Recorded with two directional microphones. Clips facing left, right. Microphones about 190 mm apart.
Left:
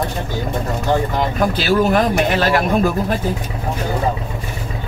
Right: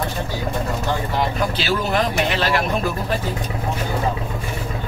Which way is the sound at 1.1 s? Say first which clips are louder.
Left 3 dB; 45° left (ahead or behind).